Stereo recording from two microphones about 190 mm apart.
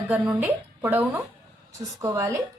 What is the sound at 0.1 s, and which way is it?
A woman's voice, 10° right (ahead or behind).